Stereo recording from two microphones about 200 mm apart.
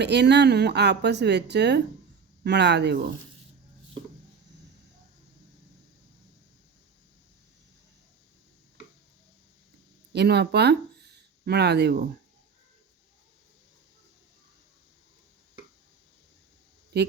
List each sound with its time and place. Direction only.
0.0 s speech: 60° right (ahead or behind)
10.1 s speech: 55° right (ahead or behind)
16.9 s a man's voice: 55° right (ahead or behind)